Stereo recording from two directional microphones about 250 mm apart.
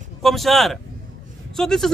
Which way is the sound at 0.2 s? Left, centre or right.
Centre.